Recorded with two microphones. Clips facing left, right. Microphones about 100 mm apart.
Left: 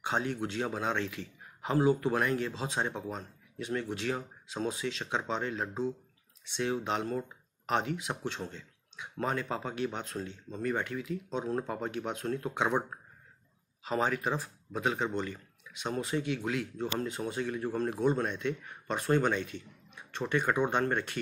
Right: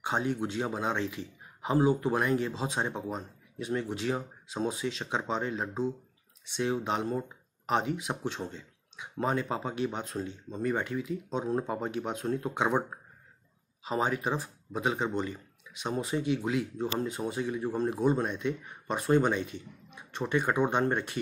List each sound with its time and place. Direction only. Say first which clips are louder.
0.0 s a man's voice: right 2 dB; 15° right (ahead or behind)
7.0 s a man's voice: right 2 dB; 25° right (ahead or behind)
9.8 s speech: right 2 dB; 10° right (ahead or behind)
10.5 s a man's voice: right 2 dB; 20° right (ahead or behind)
13.8 s speech: right 1 dB; 15° right (ahead or behind)